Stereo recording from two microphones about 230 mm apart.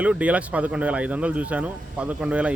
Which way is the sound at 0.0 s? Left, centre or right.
Centre.